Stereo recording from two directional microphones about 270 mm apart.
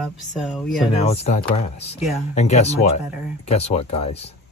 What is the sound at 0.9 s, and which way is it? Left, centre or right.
Speech, left.